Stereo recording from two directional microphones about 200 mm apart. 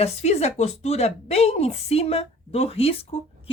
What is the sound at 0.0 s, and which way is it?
A woman's voice, 30° left (ahead or behind).